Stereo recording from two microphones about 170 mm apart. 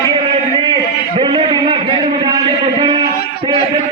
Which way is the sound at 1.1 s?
30° right (ahead or behind).